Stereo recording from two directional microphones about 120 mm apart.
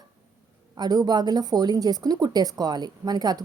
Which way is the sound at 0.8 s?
35° right (ahead or behind).